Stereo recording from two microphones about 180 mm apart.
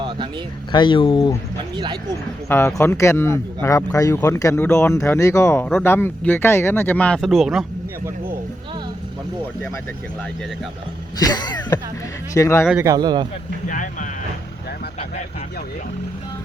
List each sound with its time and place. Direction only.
0.7 s speech: 25° left (ahead or behind)
1.7 s speech: 25° right (ahead or behind)
2.5 s speech: 15° left (ahead or behind)
11.2 s speech: 20° left (ahead or behind)
12.8 s speech: 20° right (ahead or behind)
13.7 s speech: 45° left (ahead or behind)